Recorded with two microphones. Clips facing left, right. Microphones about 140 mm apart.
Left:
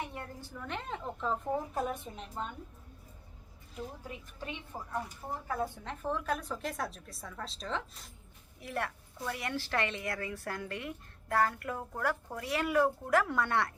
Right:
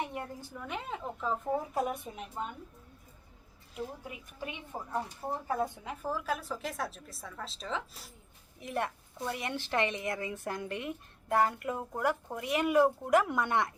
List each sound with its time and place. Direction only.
0.0 s a woman's voice: 15° right (ahead or behind)
3.8 s a woman's voice: 10° right (ahead or behind)
4.9 s a woman's voice: 30° right (ahead or behind); by 8.1 s centre (ahead or behind)
8.6 s a woman's voice: 20° right (ahead or behind)